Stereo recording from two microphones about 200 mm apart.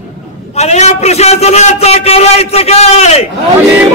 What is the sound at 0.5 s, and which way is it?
A man's voice, 35° left (ahead or behind).